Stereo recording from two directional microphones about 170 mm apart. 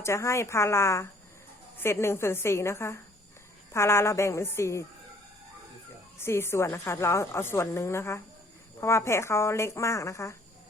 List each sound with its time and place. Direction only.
0.0 s a woman's voice: 15° left (ahead or behind)
6.1 s a woman's voice: 15° left (ahead or behind)